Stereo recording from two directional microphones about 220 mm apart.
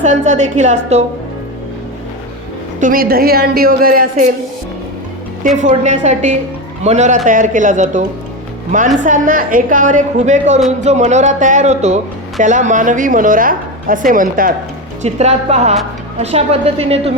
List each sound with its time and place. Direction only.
0.0 s a woman's voice: 35° right (ahead or behind)
2.8 s a woman's voice: 40° right (ahead or behind)
5.6 s a woman's voice: 35° right (ahead or behind)
9.0 s a woman's voice: 35° right (ahead or behind)